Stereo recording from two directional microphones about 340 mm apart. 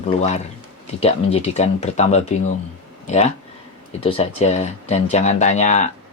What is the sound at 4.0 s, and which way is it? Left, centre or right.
Speech, centre.